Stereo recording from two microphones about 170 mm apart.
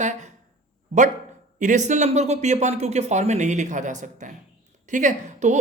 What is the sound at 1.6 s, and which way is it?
A woman's voice, 45° right (ahead or behind).